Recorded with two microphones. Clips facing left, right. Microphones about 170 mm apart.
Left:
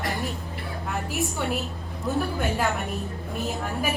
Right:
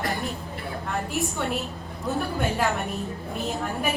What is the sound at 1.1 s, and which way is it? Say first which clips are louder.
A woman's voice: left 1 dB; centre (ahead or behind).